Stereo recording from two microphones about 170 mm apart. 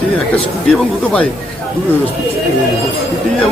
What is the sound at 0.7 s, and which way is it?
Speech, 5° left (ahead or behind).